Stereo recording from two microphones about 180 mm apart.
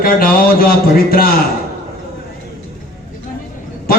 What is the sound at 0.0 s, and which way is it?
A man's voice, 55° left (ahead or behind).